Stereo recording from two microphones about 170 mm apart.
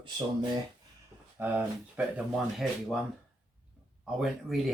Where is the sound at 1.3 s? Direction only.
10° right (ahead or behind).